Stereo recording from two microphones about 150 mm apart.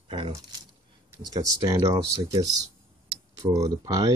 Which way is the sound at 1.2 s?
25° right (ahead or behind).